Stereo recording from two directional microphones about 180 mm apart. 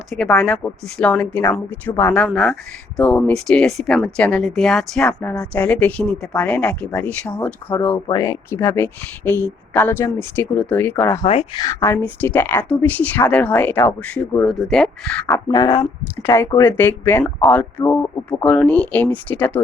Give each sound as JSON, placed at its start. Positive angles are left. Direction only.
{"t": 0.3, "sound": "speech", "side_deg": 10}
{"t": 11.3, "sound": "speech", "side_deg": 30}
{"t": 11.6, "sound": "speech", "side_deg": 15}
{"t": 15.3, "sound": "speech", "side_deg": 20}